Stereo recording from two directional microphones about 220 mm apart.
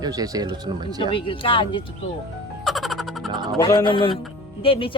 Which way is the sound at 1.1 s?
25° left (ahead or behind).